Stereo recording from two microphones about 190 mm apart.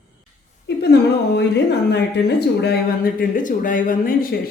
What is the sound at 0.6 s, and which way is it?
Speech, 60° left (ahead or behind).